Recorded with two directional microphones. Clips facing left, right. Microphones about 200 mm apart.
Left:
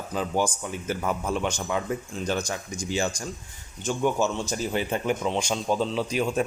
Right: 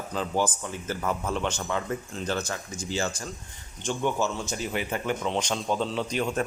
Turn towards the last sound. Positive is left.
turn(degrees=5)  # may be behind; listen again after turning